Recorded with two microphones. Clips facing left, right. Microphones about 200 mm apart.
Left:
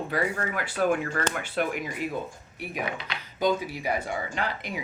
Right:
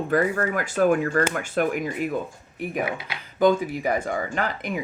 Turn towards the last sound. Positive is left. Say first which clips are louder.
# right 5 dB
turn(degrees=-50)  # may be behind; listen again after turning